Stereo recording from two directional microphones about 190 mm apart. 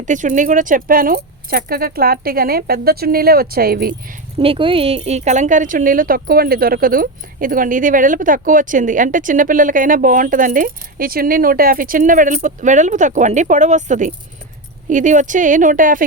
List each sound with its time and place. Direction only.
0.0 s speech: 40° right (ahead or behind)
4.4 s speech: 25° right (ahead or behind); by 16.0 s 45° right (ahead or behind)